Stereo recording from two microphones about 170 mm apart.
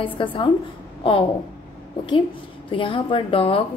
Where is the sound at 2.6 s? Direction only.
30° left (ahead or behind).